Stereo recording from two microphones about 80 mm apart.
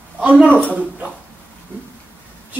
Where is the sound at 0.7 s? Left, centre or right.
Centre.